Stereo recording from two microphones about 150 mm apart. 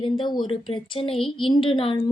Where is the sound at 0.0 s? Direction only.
30° left (ahead or behind).